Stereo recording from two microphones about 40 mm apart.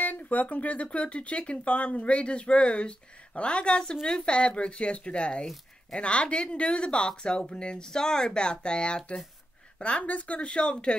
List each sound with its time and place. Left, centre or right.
0.0 s a woman's voice: left
10.0 s speech: left